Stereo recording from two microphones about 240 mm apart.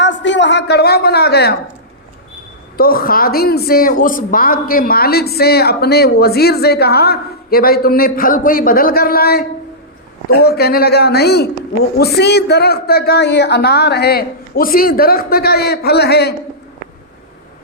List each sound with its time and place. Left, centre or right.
0.0 s a man's voice: left
2.7 s a woman's voice: left